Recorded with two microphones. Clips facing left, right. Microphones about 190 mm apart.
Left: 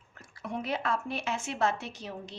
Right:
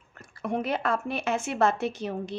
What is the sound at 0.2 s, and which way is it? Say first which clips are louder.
A woman's voice: right 7 dB; 60° right (ahead or behind).